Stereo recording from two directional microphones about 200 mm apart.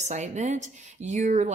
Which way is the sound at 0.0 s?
35° right (ahead or behind).